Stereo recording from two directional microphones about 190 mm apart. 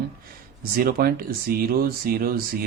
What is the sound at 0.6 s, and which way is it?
Speech, 50° right (ahead or behind).